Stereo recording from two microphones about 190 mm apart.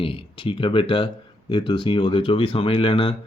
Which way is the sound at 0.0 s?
30° left (ahead or behind).